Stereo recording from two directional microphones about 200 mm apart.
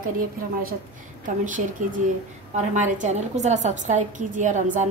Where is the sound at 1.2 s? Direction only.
40° right (ahead or behind).